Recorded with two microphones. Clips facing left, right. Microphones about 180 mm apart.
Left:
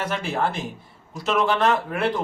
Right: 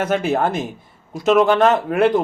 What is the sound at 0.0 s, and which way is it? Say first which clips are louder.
A man's voice: right 7 dB; 50° right (ahead or behind).